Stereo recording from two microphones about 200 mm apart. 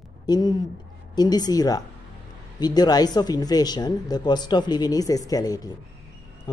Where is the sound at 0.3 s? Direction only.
20° left (ahead or behind).